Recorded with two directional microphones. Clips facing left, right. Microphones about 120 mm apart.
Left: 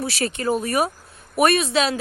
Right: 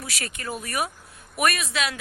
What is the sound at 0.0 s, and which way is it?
A woman's voice, 30° left (ahead or behind).